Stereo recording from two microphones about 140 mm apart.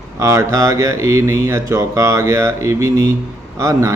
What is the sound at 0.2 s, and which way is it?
A man's voice, 20° right (ahead or behind).